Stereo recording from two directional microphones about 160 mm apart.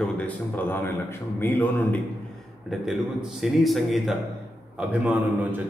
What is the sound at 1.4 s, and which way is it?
Speech, 10° left (ahead or behind).